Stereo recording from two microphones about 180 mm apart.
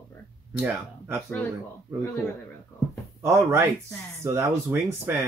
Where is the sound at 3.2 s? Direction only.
15° right (ahead or behind).